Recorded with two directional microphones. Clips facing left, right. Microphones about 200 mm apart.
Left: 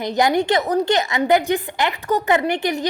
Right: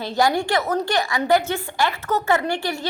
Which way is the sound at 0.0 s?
20° left (ahead or behind).